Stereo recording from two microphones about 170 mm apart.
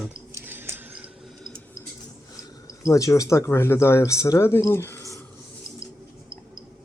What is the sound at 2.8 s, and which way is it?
Speech, 20° left (ahead or behind).